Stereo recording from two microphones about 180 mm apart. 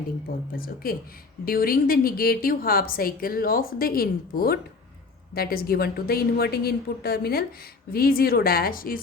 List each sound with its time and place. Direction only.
0.5 s a woman's voice: 55° left (ahead or behind)